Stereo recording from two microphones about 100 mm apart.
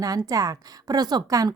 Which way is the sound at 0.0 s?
35° right (ahead or behind).